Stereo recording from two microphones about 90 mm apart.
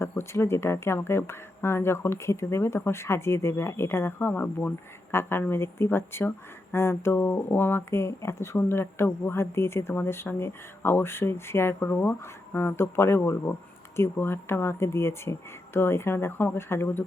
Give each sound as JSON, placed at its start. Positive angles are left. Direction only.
{"t": 0.0, "sound": "speech", "side_deg": 30}